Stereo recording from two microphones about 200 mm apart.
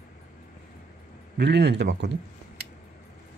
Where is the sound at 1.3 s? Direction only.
60° right (ahead or behind).